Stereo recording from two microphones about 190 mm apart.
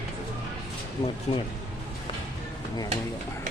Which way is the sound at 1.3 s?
30° left (ahead or behind).